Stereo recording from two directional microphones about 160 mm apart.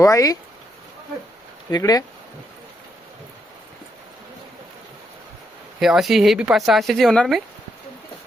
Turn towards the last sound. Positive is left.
turn(degrees=0)  # may be behind; listen again after turning